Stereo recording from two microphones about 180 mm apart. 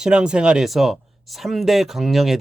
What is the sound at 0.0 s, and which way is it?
Speech, 5° right (ahead or behind).